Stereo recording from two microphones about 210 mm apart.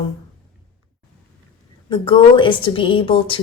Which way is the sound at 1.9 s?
25° left (ahead or behind).